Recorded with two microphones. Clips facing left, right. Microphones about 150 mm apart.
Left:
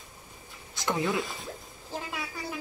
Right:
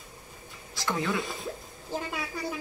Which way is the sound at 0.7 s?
20° left (ahead or behind).